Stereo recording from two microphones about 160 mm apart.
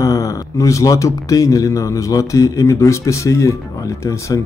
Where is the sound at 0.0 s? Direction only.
20° left (ahead or behind).